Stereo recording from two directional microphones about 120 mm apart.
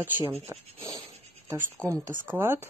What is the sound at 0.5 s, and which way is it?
Speech, 30° right (ahead or behind).